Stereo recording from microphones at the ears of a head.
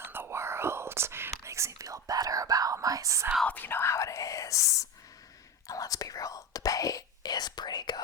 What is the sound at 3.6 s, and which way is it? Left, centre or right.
Whispering, left.